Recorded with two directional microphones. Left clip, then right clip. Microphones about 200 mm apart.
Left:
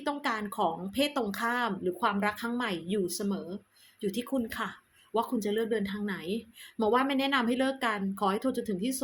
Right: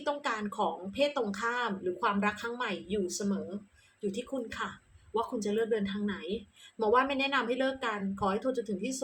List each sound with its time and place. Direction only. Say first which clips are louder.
0.0 s speech: left 1 dB; 40° left (ahead or behind)